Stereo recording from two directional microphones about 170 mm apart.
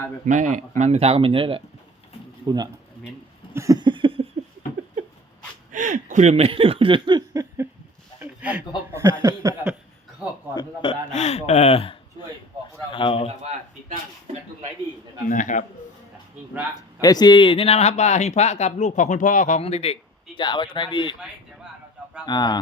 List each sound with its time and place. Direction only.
0.3 s a man's voice: 45° right (ahead or behind); by 1.6 s 30° right (ahead or behind)
2.5 s a sound: 25° right (ahead or behind)
5.7 s speech: 50° right (ahead or behind); by 9.1 s 15° right (ahead or behind)
9.2 s a sound: 20° right (ahead or behind)
10.5 s a man's voice: 25° left (ahead or behind)
11.1 s a man's voice: 40° left (ahead or behind)
15.3 s a man's voice: 50° left (ahead or behind)
17.0 s speech: 25° left (ahead or behind)
22.3 s speech: 25° left (ahead or behind)